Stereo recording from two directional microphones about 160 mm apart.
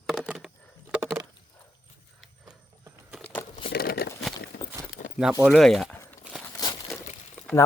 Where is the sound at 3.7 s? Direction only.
70° left (ahead or behind).